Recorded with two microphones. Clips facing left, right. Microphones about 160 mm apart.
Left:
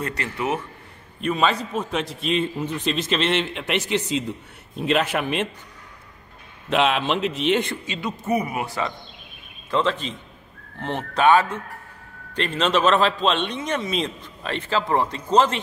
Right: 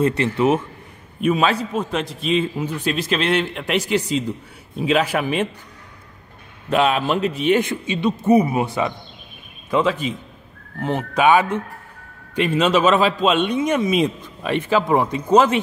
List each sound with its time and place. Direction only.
0.0 s a man's voice: 25° right (ahead or behind)
1.2 s a man's voice: 5° right (ahead or behind)
6.7 s a man's voice: centre (ahead or behind)
7.8 s a man's voice: 20° right (ahead or behind)